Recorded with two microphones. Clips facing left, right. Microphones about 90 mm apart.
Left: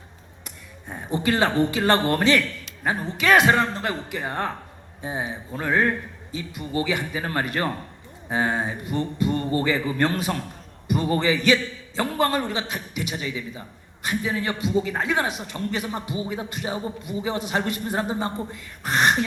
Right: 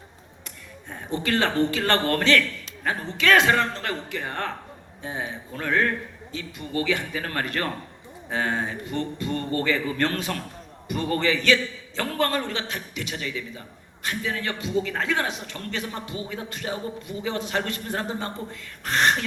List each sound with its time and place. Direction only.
0.9 s a man's voice: 15° left (ahead or behind)